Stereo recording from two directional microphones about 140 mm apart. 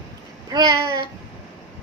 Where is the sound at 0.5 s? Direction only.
30° right (ahead or behind).